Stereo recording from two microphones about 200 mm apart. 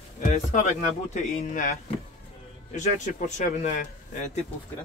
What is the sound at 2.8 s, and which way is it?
Speech, 35° left (ahead or behind).